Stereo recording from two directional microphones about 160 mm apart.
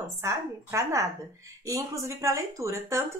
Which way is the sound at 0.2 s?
15° right (ahead or behind).